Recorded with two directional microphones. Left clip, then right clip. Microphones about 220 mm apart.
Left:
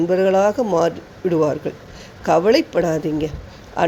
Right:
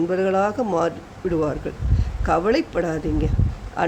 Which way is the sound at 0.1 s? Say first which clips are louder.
Left 5 dB; 10° left (ahead or behind).